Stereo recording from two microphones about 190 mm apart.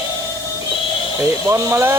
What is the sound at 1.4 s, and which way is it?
Speech, 15° right (ahead or behind).